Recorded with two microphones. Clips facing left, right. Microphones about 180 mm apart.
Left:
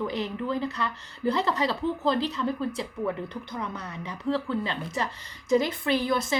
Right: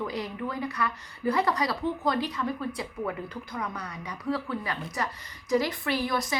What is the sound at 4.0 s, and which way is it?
A woman's voice, 25° left (ahead or behind).